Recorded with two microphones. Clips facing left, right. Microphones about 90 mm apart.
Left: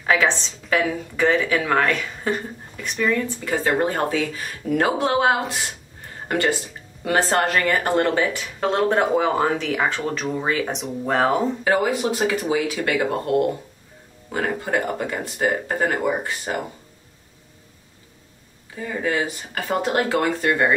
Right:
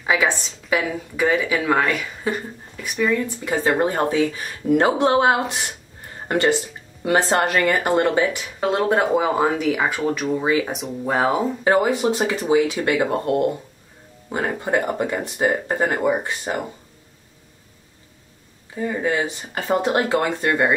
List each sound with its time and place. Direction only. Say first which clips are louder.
0.0 s speech: left 1 dB; 10° right (ahead or behind)
11.6 s speech: right 2 dB; 25° right (ahead or behind)
18.8 s speech: right 2 dB; 25° right (ahead or behind)